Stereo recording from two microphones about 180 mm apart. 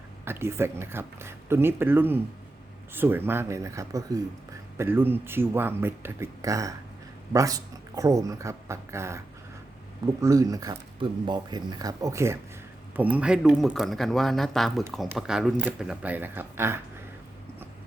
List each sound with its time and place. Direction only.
0.3 s speech: 15° right (ahead or behind)